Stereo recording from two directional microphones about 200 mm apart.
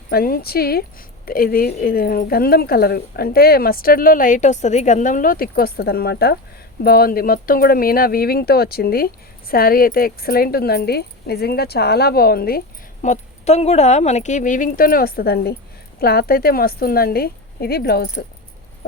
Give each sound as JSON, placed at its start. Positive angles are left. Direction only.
{"t": 0.1, "sound": "a woman's voice", "side_deg": 50}